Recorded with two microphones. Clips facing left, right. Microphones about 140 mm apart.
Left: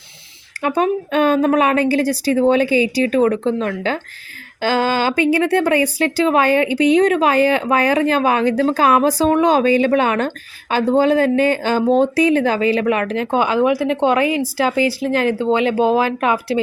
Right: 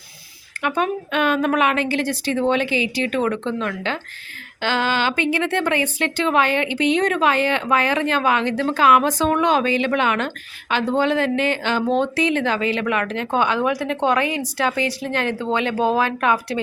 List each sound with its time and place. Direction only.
0.6 s a woman's voice: 35° left (ahead or behind)